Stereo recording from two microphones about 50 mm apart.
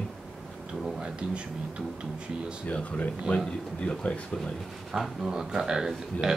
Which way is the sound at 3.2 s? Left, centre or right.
Centre.